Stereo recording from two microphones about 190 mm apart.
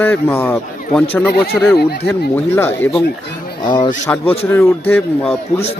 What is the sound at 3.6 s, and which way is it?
Speech, 25° left (ahead or behind).